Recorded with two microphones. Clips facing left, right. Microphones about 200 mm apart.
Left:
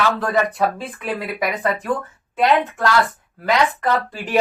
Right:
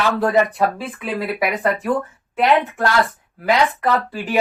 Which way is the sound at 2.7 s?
15° right (ahead or behind).